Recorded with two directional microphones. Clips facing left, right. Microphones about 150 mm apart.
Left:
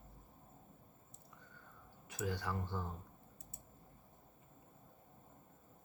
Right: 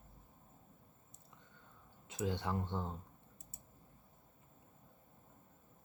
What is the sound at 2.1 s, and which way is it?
Speech, 25° right (ahead or behind).